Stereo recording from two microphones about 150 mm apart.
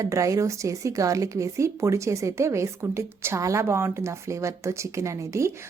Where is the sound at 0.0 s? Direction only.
20° right (ahead or behind).